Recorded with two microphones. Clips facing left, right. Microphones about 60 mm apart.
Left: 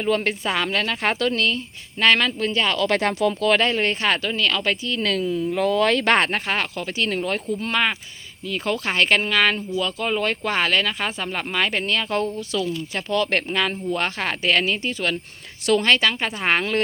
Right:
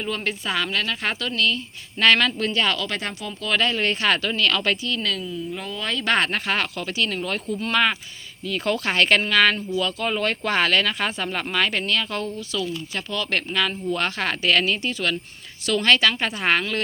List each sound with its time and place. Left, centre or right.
0.3 s a woman's voice: left
2.0 s speech: centre
2.9 s speech: left
3.5 s speech: left; by 4.8 s centre
4.8 s speech: left
5.0 s speech: left
5.5 s speech: left
6.1 s speech: left
6.9 s speech: left
7.7 s speech: centre